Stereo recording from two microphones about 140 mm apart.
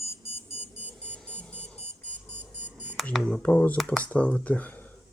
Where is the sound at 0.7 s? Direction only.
10° right (ahead or behind).